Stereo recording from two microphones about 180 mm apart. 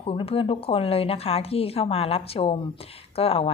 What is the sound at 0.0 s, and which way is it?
A woman's voice, 30° left (ahead or behind).